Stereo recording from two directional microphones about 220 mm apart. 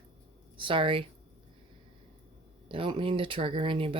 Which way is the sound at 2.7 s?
25° right (ahead or behind).